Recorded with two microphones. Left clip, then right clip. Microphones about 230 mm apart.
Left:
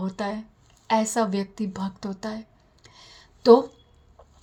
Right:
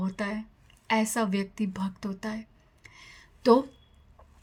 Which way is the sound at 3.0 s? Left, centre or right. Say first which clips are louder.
Left 3 dB; right.